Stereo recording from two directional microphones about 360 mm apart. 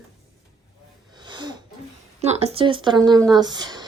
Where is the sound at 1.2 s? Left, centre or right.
Centre.